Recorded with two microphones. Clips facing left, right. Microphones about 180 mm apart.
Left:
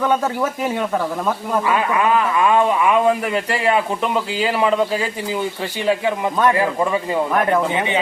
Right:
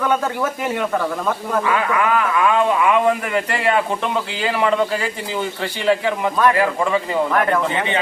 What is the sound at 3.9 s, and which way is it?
Speech, 10° left (ahead or behind).